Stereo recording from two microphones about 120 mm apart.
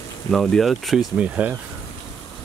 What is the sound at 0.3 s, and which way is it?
Speech, 5° left (ahead or behind).